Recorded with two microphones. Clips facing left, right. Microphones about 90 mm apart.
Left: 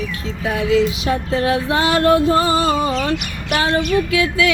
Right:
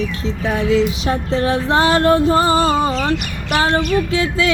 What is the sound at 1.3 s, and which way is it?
Music, 30° right (ahead or behind).